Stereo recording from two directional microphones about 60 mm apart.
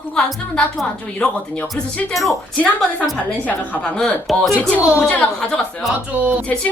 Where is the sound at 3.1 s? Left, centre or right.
Left.